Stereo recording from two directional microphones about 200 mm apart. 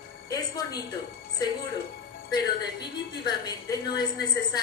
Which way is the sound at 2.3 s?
20° left (ahead or behind).